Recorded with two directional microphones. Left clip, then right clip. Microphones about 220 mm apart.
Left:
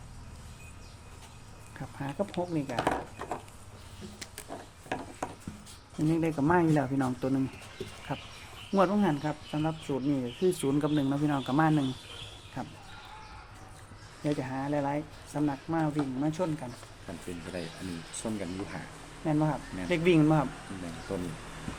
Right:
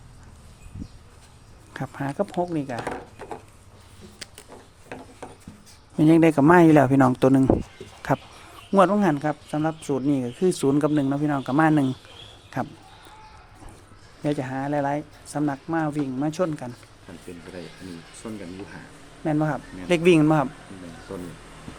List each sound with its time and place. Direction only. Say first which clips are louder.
1.7 s speech: right 8 dB; 50° right (ahead or behind)
6.1 s speech: right 11 dB; 45° right (ahead or behind)
14.3 s speech: right 6 dB; 50° right (ahead or behind)
18.2 s speech: even; 25° left (ahead or behind)
19.2 s speech: right 5 dB; 50° right (ahead or behind)